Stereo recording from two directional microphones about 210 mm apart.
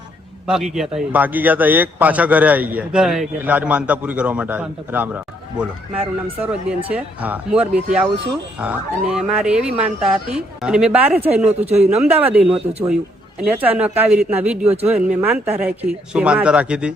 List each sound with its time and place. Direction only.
0.4 s a man's voice: centre (ahead or behind)
6.4 s a man's voice: 5° right (ahead or behind)
11.6 s a man's voice: 30° right (ahead or behind)
11.9 s a man's voice: 10° right (ahead or behind)